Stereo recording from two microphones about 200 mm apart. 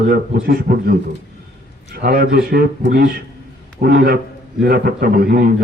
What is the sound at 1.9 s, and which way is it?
A man's voice, 45° right (ahead or behind).